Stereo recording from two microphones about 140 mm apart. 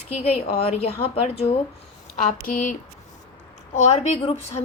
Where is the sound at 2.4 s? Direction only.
70° left (ahead or behind).